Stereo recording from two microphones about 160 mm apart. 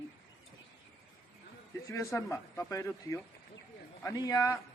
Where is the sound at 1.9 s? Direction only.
20° left (ahead or behind).